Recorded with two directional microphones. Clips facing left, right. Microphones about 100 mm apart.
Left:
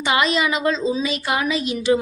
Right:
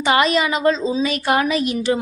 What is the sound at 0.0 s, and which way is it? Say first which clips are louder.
A woman's voice: right 3 dB; 40° right (ahead or behind).